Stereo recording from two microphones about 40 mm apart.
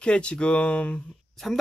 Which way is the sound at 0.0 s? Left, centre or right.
Left.